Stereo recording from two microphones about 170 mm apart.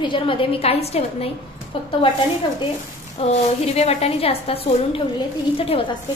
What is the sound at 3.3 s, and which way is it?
A woman's voice, 40° left (ahead or behind).